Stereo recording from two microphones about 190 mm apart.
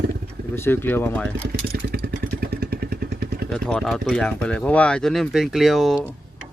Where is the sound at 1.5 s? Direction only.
55° right (ahead or behind).